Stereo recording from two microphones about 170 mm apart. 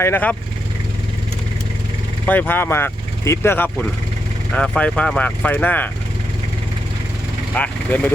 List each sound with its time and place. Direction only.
0.0 s speech: 10° left (ahead or behind)
2.2 s speech: 10° left (ahead or behind)
7.5 s speech: 10° left (ahead or behind)